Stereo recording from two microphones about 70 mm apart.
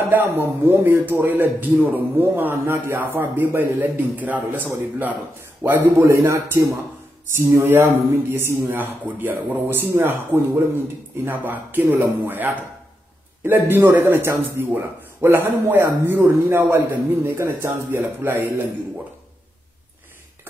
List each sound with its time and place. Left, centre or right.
0.1 s a man's voice: right
5.6 s a man's voice: right